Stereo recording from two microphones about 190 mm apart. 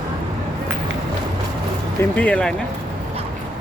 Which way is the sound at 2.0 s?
10° left (ahead or behind).